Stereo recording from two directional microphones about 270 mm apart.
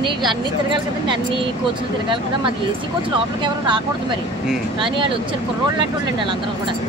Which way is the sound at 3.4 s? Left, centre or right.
Centre.